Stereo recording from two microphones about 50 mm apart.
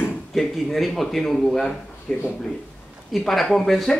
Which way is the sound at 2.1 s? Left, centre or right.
Centre.